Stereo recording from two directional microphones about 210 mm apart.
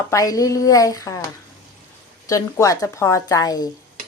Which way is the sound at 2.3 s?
15° left (ahead or behind).